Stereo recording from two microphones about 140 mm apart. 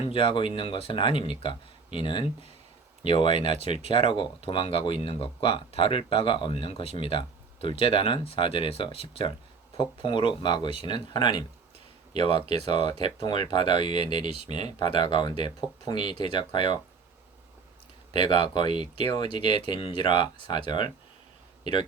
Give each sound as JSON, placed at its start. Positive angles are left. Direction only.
{"t": 0.0, "sound": "speech", "side_deg": 40}
{"t": 12.5, "sound": "speech", "side_deg": -45}
{"t": 12.9, "sound": "speech", "side_deg": 30}
{"t": 18.3, "sound": "speech", "side_deg": 35}